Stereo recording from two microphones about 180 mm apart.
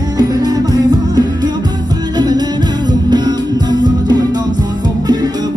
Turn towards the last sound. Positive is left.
turn(degrees=-20)  # may be behind; listen again after turning